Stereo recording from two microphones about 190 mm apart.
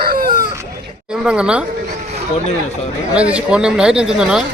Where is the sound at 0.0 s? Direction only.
50° right (ahead or behind).